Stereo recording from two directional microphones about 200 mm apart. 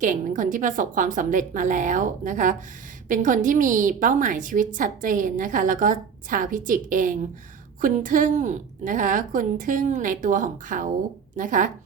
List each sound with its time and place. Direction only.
0.0 s a woman's voice: 40° right (ahead or behind)